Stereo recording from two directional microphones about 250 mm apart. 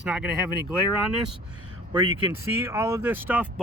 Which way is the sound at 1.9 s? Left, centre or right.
Centre.